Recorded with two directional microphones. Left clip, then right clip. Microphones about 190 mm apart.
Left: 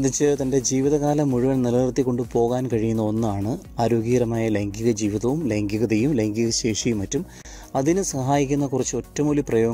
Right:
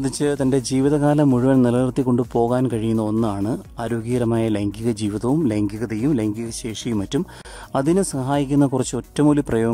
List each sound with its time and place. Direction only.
0.0 s speech: centre (ahead or behind)
2.0 s speech: 15° right (ahead or behind)
2.5 s speech: 5° right (ahead or behind)
3.0 s speech: 30° right (ahead or behind)
3.3 s speech: centre (ahead or behind)